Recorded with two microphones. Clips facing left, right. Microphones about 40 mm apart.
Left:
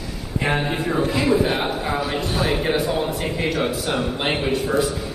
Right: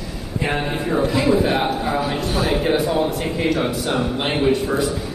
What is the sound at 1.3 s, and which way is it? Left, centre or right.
Speech, left.